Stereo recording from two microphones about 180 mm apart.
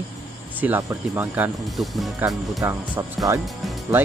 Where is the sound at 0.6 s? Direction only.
10° right (ahead or behind).